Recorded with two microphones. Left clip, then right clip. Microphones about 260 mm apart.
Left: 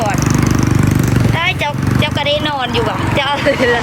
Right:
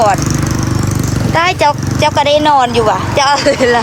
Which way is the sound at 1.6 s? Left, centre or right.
Centre.